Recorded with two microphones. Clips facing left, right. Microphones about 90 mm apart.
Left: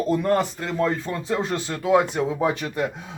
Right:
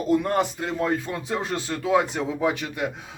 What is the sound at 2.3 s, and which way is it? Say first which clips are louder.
Speech: left 1 dB; 35° left (ahead or behind).